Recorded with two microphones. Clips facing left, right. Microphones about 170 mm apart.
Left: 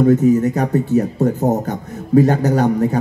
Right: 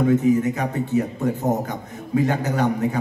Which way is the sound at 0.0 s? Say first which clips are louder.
Left 5 dB; 40° left (ahead or behind).